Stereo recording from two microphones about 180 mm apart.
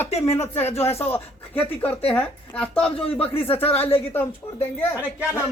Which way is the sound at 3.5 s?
10° left (ahead or behind).